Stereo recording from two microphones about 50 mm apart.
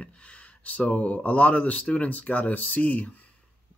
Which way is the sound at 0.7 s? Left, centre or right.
Left.